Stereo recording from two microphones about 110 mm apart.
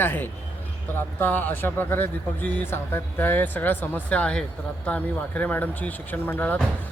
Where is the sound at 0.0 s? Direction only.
20° left (ahead or behind).